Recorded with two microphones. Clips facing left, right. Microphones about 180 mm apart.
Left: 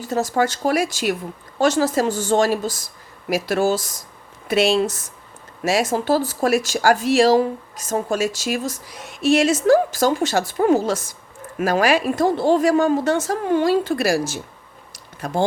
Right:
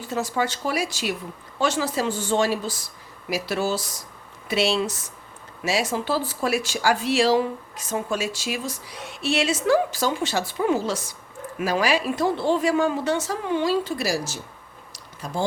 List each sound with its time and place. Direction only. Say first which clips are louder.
0.0 s speech: left 5 dB; 40° left (ahead or behind)